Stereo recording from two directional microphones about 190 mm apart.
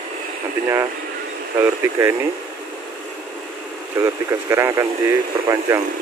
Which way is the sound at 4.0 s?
15° right (ahead or behind).